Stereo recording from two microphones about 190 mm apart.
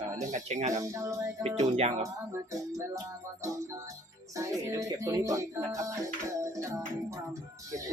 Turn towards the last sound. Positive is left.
turn(degrees=-15)  # may be behind; listen again after turning